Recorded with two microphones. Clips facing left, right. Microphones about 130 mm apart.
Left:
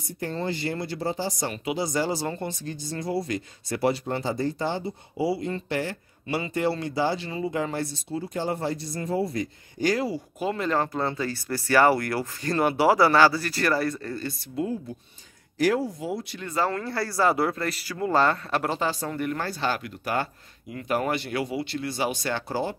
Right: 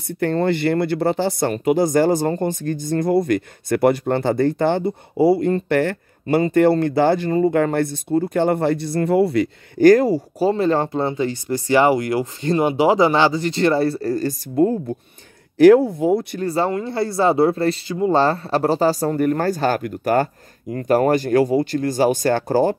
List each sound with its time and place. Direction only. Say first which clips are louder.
0.1 s speech: right 11 dB; 65° right (ahead or behind)
1.5 s speech: right 11 dB; 50° right (ahead or behind)
6.2 s speech: right 11 dB; 45° right (ahead or behind); by 9.8 s 70° right (ahead or behind)
9.8 s speech: right 13 dB; 45° right (ahead or behind)
10.5 s speech: right 5 dB; 30° right (ahead or behind); by 16.4 s 55° right (ahead or behind)
16.4 s speech: right 4 dB; 30° right (ahead or behind); by 22.8 s 45° right (ahead or behind)